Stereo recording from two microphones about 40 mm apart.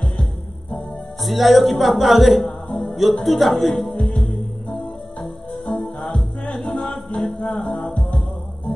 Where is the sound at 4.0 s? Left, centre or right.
Left.